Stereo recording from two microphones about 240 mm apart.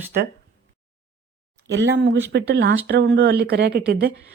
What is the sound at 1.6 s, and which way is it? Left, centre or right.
Speech, right.